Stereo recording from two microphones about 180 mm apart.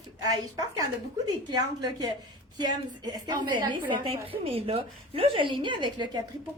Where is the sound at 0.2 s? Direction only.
20° right (ahead or behind).